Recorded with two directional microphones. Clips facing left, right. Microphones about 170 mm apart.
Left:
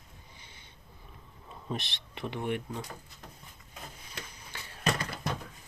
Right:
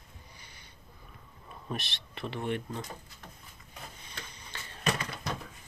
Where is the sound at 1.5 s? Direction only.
20° left (ahead or behind).